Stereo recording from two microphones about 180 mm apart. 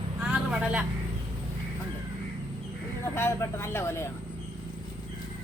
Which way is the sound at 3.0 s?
15° left (ahead or behind).